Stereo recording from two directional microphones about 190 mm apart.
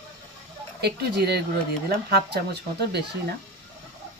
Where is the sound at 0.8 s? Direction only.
60° right (ahead or behind).